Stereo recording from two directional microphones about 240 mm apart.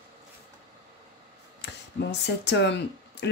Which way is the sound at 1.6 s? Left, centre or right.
Left.